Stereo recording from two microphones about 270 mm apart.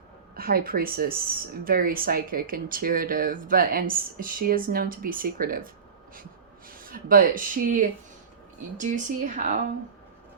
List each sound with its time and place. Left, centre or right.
0.3 s speech: right